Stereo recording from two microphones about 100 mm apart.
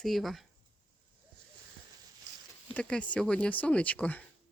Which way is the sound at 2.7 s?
10° left (ahead or behind).